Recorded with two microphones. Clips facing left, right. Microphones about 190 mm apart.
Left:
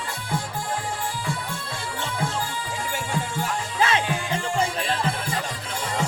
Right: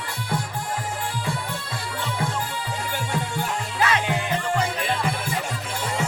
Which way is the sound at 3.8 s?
25° left (ahead or behind).